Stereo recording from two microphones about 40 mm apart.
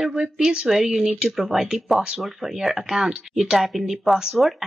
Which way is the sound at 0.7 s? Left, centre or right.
Centre.